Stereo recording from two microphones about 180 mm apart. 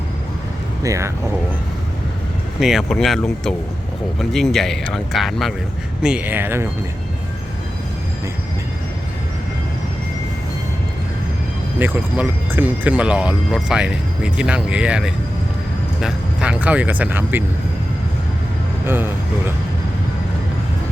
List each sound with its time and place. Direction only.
0.8 s speech: 15° right (ahead or behind)
2.6 s speech: centre (ahead or behind)
11.8 s speech: 10° right (ahead or behind)
18.9 s speech: 10° right (ahead or behind)